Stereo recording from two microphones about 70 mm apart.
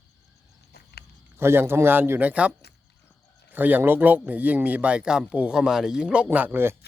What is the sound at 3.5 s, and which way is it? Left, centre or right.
Speech, right.